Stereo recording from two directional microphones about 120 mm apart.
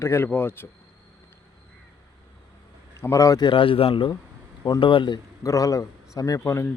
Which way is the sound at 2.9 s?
25° left (ahead or behind).